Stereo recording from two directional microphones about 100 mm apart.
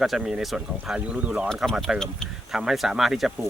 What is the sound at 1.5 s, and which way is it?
Speech, centre (ahead or behind).